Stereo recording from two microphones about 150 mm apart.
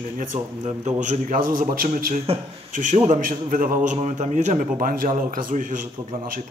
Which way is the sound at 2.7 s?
60° right (ahead or behind).